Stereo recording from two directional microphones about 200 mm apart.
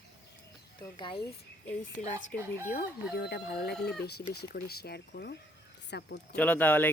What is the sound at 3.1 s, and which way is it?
Speech, 55° left (ahead or behind).